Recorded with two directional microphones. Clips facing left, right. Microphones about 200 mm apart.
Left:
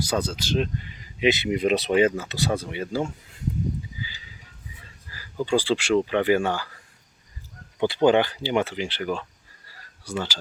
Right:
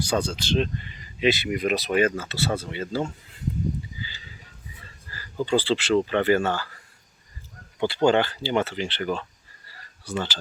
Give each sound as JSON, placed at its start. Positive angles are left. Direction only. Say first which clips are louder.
{"t": 0.0, "sound": "speech", "louder": "right 1 dB", "side_deg": 10}
{"t": 1.3, "sound": "speech", "louder": "left 2 dB", "side_deg": 20}
{"t": 4.0, "sound": "a sound", "louder": "left 1 dB", "side_deg": 10}
{"t": 5.1, "sound": "speech", "louder": "even", "side_deg": 10}
{"t": 7.8, "sound": "speech", "louder": "left 1 dB", "side_deg": 15}